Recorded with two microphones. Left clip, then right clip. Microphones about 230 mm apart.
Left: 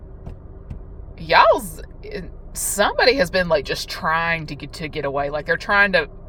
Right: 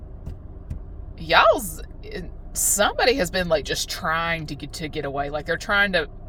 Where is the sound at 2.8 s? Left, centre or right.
Left.